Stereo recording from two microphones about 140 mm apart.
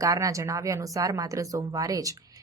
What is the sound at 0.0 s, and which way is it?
Speech, 25° right (ahead or behind).